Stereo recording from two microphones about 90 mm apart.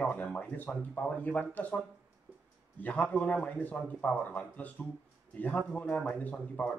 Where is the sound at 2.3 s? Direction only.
5° right (ahead or behind).